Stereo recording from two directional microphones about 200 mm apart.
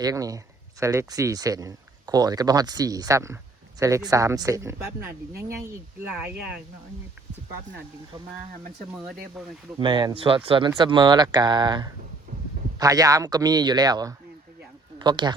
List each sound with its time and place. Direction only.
0.0 s speech: 15° right (ahead or behind)
9.7 s speech: 20° right (ahead or behind)